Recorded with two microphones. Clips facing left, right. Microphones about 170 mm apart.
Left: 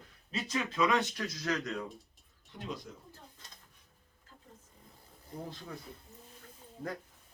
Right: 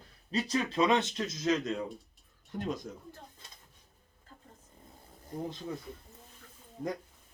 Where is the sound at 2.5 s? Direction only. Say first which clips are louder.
Right 6 dB; 45° right (ahead or behind).